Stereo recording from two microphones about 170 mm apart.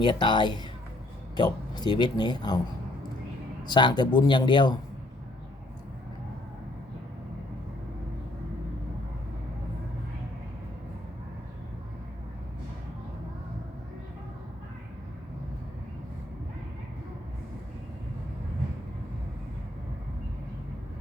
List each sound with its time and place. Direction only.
0.0 s speech: 25° left (ahead or behind)
3.6 s speech: 25° left (ahead or behind)